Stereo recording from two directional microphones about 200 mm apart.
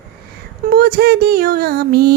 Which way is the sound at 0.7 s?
50° right (ahead or behind).